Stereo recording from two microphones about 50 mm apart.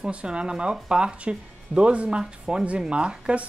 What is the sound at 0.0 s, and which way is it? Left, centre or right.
Speech, right.